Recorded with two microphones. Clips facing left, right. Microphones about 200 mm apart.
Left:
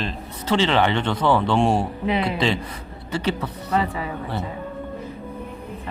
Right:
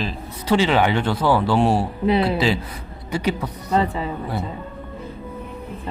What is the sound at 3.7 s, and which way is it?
Speech, 25° right (ahead or behind).